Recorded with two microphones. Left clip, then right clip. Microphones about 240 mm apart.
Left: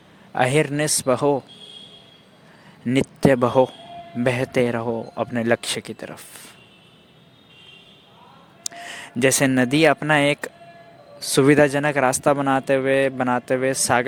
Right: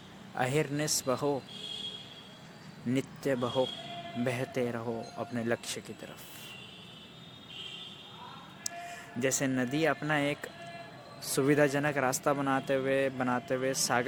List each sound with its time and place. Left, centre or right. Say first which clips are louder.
0.3 s a man's voice: left 12 dB; left
2.8 s a man's voice: left 14 dB; left
8.9 s a man's voice: left 13 dB; left